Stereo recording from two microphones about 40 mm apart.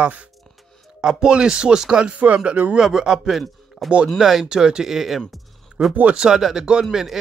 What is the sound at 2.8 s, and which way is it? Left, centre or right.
A man's voice, centre.